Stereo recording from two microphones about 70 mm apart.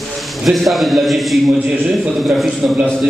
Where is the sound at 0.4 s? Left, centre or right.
Centre.